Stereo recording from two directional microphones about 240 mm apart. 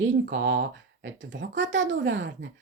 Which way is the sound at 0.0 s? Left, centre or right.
Right.